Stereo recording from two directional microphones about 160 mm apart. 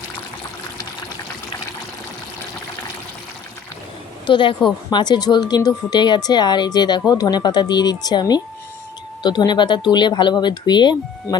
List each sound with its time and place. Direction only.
4.3 s speech: 30° left (ahead or behind)